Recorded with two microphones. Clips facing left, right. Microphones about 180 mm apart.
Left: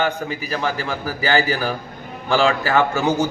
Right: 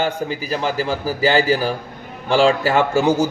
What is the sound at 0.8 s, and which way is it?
A man's voice, 30° right (ahead or behind).